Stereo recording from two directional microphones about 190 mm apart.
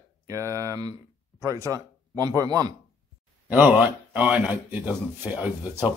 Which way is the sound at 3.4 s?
10° right (ahead or behind).